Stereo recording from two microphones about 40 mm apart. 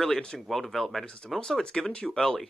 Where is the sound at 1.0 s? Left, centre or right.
Left.